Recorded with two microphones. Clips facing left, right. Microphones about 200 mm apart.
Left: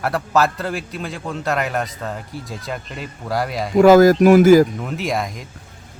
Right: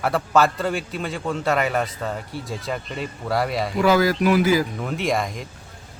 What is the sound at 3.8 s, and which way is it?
Speech, 45° left (ahead or behind).